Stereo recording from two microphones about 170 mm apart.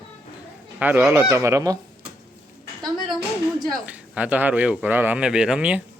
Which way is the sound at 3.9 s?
10° right (ahead or behind).